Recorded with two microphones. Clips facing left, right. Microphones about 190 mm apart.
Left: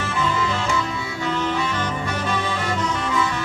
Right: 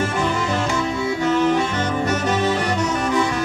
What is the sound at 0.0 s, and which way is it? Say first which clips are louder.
Music: right 2 dB; 45° right (ahead or behind).